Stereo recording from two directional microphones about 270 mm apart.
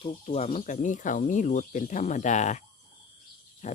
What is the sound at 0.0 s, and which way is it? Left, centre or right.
Speech, left.